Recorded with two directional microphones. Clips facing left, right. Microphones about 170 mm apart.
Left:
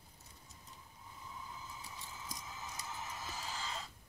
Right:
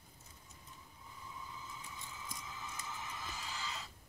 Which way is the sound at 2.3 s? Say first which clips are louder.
Left 2 dB; 35° left (ahead or behind).